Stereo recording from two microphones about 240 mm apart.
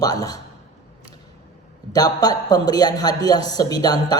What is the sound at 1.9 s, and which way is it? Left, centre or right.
A man's voice, centre.